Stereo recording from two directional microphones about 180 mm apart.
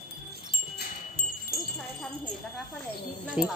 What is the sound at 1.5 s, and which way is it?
Wind chime, 60° right (ahead or behind).